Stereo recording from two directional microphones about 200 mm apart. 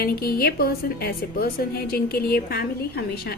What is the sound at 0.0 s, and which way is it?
A woman's voice, 50° left (ahead or behind).